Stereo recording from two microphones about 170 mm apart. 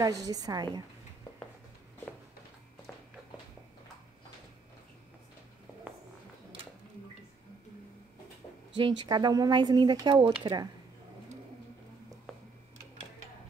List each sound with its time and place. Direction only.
0.0 s speech: 20° right (ahead or behind)
8.7 s speech: 25° right (ahead or behind)